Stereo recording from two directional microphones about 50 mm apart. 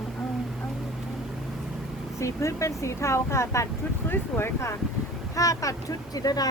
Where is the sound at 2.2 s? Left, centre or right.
Left.